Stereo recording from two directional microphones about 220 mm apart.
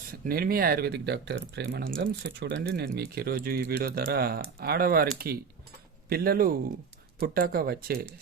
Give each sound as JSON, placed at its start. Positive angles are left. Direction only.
{"t": 0.1, "sound": "speech", "side_deg": -45}